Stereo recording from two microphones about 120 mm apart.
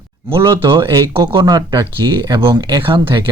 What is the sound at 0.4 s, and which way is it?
Speech, 40° right (ahead or behind).